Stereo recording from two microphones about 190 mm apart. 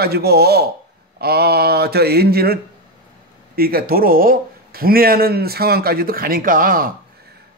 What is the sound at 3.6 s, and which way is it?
Speech, 50° right (ahead or behind).